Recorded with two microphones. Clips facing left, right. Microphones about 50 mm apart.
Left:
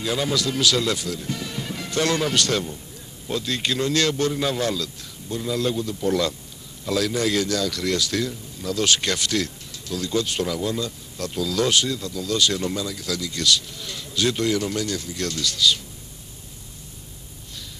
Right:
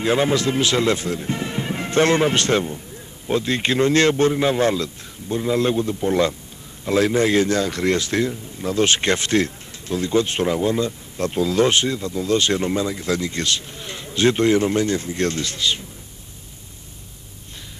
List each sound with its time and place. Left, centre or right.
0.0 s a man's voice: right